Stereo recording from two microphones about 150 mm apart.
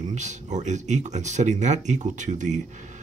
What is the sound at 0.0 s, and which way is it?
Speech, 50° right (ahead or behind).